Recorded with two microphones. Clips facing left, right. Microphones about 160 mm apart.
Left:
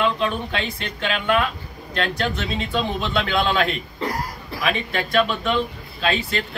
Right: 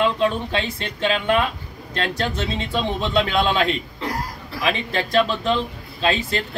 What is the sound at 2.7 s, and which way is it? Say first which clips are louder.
Speech: right 2 dB; 25° right (ahead or behind).